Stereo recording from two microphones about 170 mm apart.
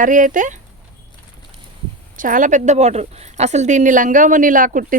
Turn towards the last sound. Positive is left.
turn(degrees=-50)  # may be behind; listen again after turning